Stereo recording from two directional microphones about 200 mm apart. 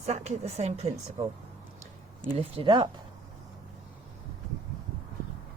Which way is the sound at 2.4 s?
25° right (ahead or behind).